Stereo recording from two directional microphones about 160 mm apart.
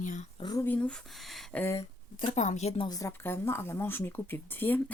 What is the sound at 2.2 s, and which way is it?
Speech, 50° left (ahead or behind).